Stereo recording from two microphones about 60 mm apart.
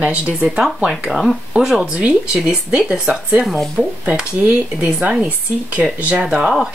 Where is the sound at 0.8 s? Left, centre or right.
Centre.